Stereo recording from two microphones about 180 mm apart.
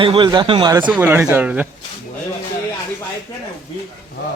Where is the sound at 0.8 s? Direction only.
10° right (ahead or behind).